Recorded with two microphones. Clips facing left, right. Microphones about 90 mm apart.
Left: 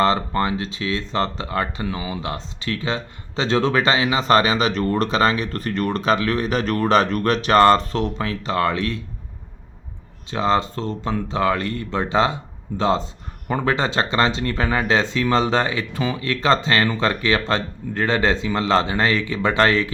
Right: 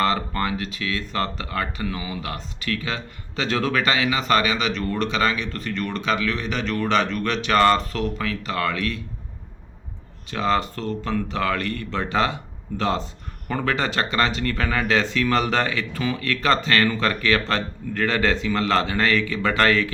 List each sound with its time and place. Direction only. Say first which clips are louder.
0.0 s speech: left 4 dB; 25° left (ahead or behind)
10.3 s speech: left 3 dB; 25° left (ahead or behind)